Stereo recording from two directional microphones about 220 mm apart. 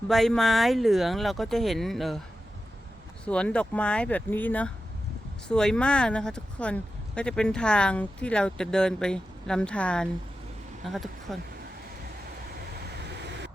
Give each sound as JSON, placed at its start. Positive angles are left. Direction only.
{"t": 0.1, "sound": "speech", "side_deg": 0}
{"t": 3.2, "sound": "speech", "side_deg": 5}
{"t": 12.9, "sound": "vehicle", "side_deg": -50}